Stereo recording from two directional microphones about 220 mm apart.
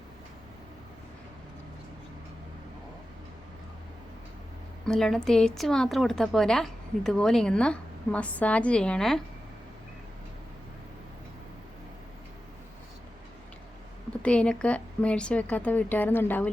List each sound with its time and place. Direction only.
4.9 s a woman's voice: centre (ahead or behind)
14.2 s speech: 5° left (ahead or behind)